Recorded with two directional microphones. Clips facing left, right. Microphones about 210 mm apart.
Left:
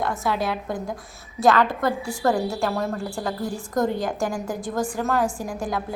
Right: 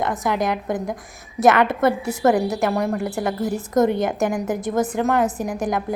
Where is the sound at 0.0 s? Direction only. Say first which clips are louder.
Right 3 dB; 15° right (ahead or behind).